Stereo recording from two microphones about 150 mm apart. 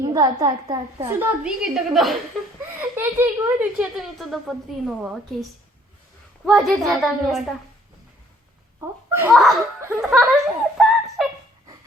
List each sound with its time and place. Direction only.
0.0 s a woman's voice: 25° right (ahead or behind)
1.0 s a woman's voice: 10° right (ahead or behind)
2.9 s a woman's voice: 15° right (ahead or behind); by 7.5 s centre (ahead or behind)
8.8 s a child's voice: 15° right (ahead or behind)
9.3 s a woman's voice: centre (ahead or behind)
10.8 s a sound: centre (ahead or behind)